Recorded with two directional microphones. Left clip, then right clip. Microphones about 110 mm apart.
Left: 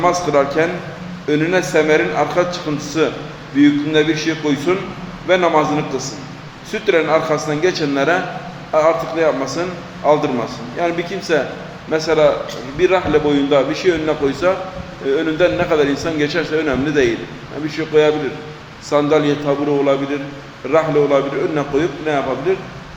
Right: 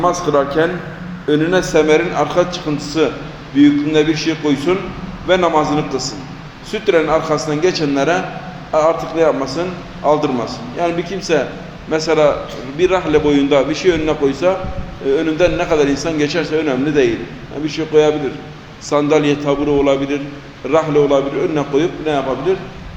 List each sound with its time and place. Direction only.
0.0 s a man's voice: 15° right (ahead or behind)
1.5 s a man's voice: 15° right (ahead or behind)